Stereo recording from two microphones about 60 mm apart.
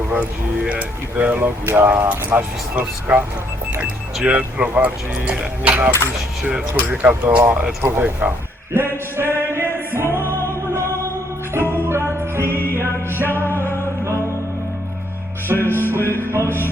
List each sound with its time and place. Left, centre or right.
0.1 s speech: centre
1.6 s speech: right
1.9 s speech: right
7.8 s speech: right
9.1 s music: right
11.5 s music: right
12.6 s music: left
15.5 s music: left